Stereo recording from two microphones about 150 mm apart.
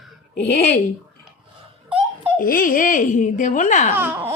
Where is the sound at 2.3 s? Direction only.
65° left (ahead or behind).